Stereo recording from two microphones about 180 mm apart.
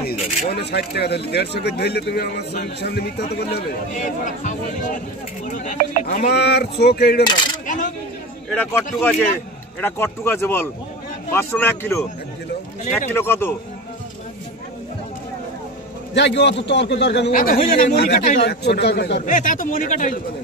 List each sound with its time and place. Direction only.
0.0 s speech: 60° left (ahead or behind)
3.9 s speech: 45° left (ahead or behind); by 7.2 s 65° left (ahead or behind)
7.6 s coin: 45° left (ahead or behind)
8.5 s speech: 10° left (ahead or behind)
16.2 s a man's voice: 75° left (ahead or behind)
17.3 s speech: 50° left (ahead or behind)
18.2 s speech: 45° left (ahead or behind)
18.5 s a man's voice: 70° left (ahead or behind)
19.2 s speech: 45° left (ahead or behind)